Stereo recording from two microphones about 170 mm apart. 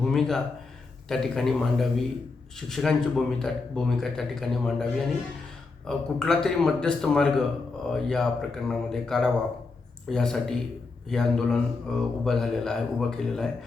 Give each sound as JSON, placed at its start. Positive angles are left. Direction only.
{"t": 0.0, "sound": "a man's voice", "side_deg": 0}